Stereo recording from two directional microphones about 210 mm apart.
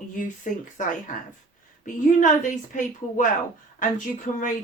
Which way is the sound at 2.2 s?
40° left (ahead or behind).